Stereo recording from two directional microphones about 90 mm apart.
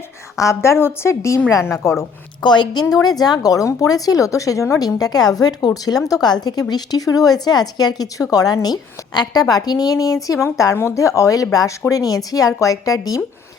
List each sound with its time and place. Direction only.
0.3 s speech: 35° left (ahead or behind)
2.4 s a woman's voice: 55° left (ahead or behind)